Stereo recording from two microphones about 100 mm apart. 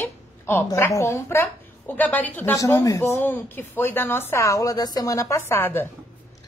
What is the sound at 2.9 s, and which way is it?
A woman's voice, 25° left (ahead or behind).